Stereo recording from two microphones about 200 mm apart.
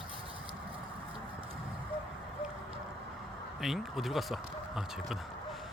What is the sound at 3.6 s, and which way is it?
Speech, centre (ahead or behind).